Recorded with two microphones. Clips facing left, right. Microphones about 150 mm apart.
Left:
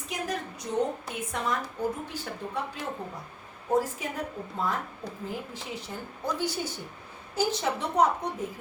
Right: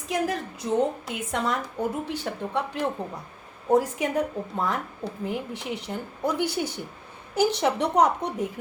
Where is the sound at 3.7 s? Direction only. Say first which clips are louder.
Right 5 dB; 80° right.